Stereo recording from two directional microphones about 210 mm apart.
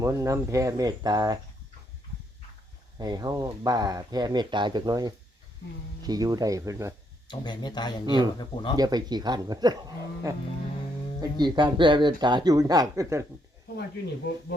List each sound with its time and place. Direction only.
0.0 s speech: 15° right (ahead or behind)
3.0 s speech: 20° right (ahead or behind)
7.3 s speech: 20° left (ahead or behind)
8.0 s speech: 20° right (ahead or behind)